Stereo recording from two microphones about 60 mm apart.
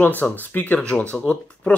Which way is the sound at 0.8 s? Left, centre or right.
Left.